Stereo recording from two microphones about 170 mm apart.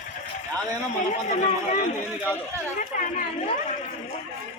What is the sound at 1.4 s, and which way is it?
Speech, 45° left (ahead or behind).